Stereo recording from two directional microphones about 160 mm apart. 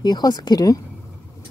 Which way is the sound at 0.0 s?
25° left (ahead or behind).